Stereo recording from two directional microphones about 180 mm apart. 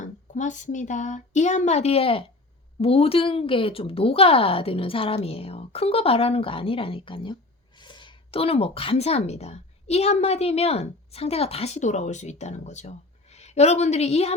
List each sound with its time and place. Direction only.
0.0 s speech: 45° left (ahead or behind)